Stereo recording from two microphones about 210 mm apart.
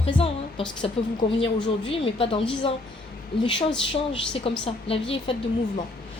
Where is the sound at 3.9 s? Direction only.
25° left (ahead or behind).